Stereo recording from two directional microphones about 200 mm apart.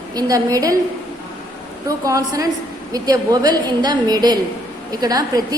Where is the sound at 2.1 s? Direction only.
15° right (ahead or behind).